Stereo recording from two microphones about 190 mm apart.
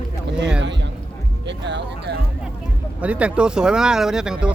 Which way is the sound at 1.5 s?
65° right (ahead or behind).